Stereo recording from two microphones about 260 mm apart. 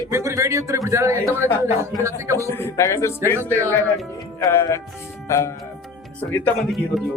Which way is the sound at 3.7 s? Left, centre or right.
Centre.